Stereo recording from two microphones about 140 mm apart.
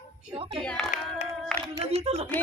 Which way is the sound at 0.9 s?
65° left (ahead or behind).